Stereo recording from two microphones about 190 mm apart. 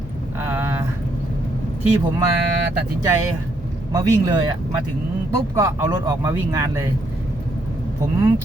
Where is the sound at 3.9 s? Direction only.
15° right (ahead or behind).